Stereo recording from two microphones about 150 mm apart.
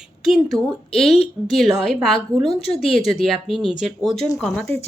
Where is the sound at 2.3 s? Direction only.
30° right (ahead or behind).